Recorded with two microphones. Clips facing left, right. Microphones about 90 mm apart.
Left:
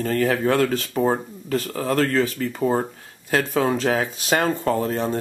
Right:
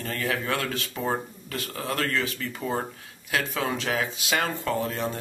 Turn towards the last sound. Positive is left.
turn(degrees=35)  # may be behind; listen again after turning